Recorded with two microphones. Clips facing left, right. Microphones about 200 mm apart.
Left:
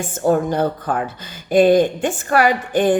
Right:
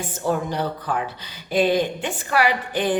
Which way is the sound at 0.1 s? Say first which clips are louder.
Left 8 dB; 50° left (ahead or behind).